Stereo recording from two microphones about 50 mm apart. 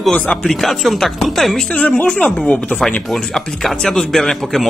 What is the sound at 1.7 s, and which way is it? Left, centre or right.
Speech, left.